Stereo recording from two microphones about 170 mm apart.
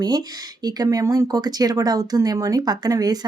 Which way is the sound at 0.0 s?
25° right (ahead or behind).